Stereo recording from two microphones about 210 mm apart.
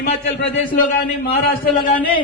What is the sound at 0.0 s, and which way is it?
A man's voice, 50° left (ahead or behind).